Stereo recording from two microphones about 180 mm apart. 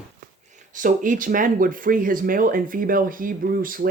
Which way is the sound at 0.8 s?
45° right (ahead or behind).